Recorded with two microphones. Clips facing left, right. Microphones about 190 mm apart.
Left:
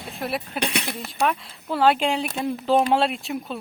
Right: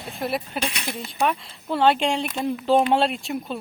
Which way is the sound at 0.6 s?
65° left (ahead or behind).